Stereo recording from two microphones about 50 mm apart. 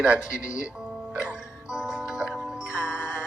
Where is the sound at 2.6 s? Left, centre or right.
Centre.